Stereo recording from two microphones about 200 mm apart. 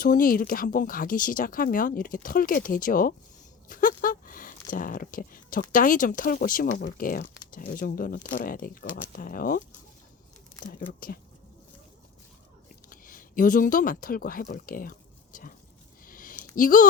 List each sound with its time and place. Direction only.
0.0 s speech: 45° left (ahead or behind)
11.0 s speech: 45° left (ahead or behind)
12.9 s speech: 45° left (ahead or behind)
16.0 s a sound: 45° left (ahead or behind)
16.6 s speech: 45° left (ahead or behind)